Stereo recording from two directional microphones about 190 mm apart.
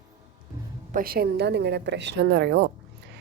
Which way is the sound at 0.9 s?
55° right (ahead or behind).